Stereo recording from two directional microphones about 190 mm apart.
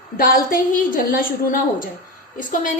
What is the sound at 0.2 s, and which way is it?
A woman's voice, 45° left (ahead or behind).